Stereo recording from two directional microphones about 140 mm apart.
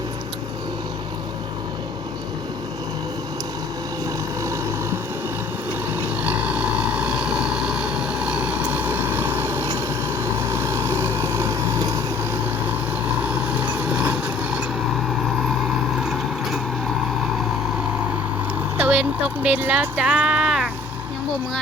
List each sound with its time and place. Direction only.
6.2 s vehicle: 10° right (ahead or behind)
13.2 s vehicle: 10° right (ahead or behind)
16.0 s mechanisms: 5° right (ahead or behind)
18.8 s a sound: 10° right (ahead or behind)